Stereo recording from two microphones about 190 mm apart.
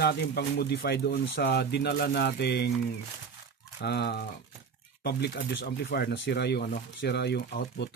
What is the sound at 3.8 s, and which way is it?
Speech, 60° left (ahead or behind).